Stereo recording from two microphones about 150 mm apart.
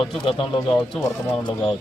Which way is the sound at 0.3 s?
35° left (ahead or behind).